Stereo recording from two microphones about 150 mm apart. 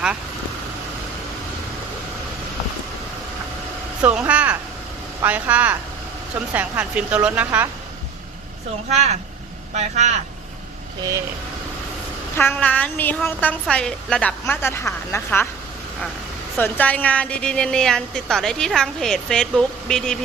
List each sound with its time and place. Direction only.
4.0 s speech: 10° right (ahead or behind)
8.9 s speech: 45° right (ahead or behind)
12.4 s a woman's voice: 10° left (ahead or behind)
16.6 s a woman's voice: 15° left (ahead or behind)